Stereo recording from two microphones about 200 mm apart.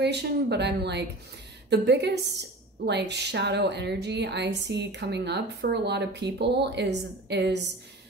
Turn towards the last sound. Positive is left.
turn(degrees=-55)  # may be behind; listen again after turning